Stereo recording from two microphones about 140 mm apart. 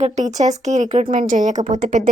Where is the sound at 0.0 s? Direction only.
55° right (ahead or behind).